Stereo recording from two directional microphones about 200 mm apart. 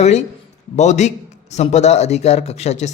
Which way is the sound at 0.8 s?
35° left (ahead or behind).